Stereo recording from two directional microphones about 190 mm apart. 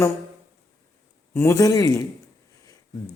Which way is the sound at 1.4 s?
15° left (ahead or behind).